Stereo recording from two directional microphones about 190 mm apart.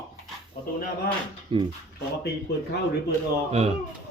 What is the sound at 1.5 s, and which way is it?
Speech, 25° right (ahead or behind).